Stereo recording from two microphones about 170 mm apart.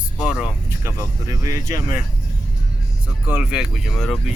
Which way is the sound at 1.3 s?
20° right (ahead or behind).